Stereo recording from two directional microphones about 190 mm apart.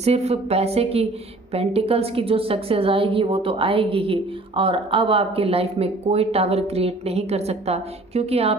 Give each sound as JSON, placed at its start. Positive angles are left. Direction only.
{"t": 0.0, "sound": "a woman's voice", "side_deg": -35}